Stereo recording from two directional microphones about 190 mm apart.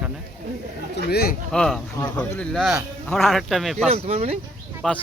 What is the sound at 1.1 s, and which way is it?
Speech, 55° left (ahead or behind).